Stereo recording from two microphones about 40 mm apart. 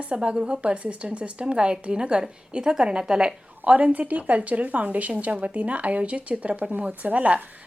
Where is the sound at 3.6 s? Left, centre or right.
Right.